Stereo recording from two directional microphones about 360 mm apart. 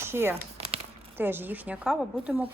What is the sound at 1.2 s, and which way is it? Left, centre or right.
Speech, centre.